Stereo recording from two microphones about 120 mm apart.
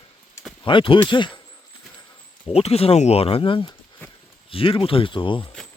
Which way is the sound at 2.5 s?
60° left (ahead or behind).